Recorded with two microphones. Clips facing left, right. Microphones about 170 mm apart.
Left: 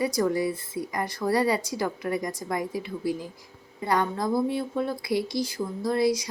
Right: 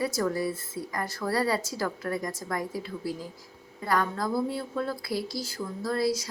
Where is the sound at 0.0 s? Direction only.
20° left (ahead or behind).